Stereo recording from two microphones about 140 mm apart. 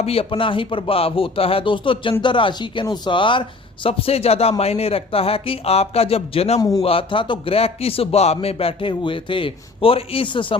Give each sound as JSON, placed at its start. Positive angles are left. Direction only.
{"t": 0.0, "sound": "a man's voice", "side_deg": 45}
{"t": 6.6, "sound": "a man's voice", "side_deg": 25}
{"t": 6.8, "sound": "a man's voice", "side_deg": 40}